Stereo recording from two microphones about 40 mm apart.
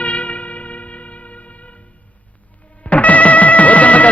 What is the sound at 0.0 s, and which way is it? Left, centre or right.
Music, left.